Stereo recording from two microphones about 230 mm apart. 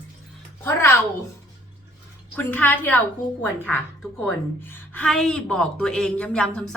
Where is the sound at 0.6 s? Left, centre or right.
Centre.